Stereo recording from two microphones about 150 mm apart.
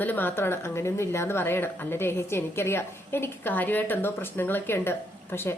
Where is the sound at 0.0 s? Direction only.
10° left (ahead or behind).